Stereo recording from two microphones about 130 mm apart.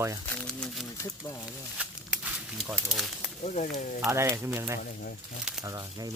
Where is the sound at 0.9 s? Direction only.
25° left (ahead or behind).